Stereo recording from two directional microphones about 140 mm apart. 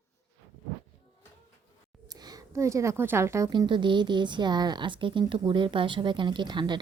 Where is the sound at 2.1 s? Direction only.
30° right (ahead or behind).